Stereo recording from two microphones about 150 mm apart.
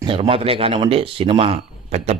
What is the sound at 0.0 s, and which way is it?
Speech, 35° right (ahead or behind).